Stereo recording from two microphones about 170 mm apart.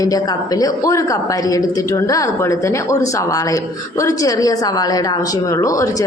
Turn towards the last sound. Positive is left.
turn(degrees=20)  # may be behind; listen again after turning